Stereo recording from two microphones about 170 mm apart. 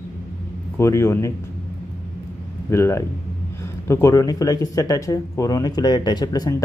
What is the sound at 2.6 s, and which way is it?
Speech, 15° left (ahead or behind).